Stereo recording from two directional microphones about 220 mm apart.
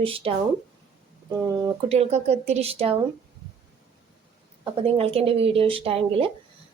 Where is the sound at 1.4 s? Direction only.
15° right (ahead or behind).